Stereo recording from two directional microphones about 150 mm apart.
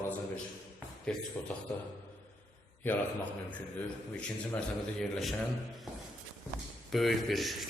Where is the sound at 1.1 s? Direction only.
5° left (ahead or behind).